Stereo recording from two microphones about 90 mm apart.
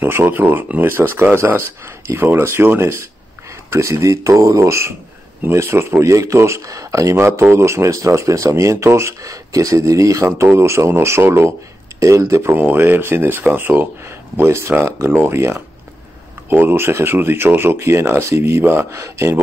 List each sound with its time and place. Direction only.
0.0 s speech: 25° right (ahead or behind)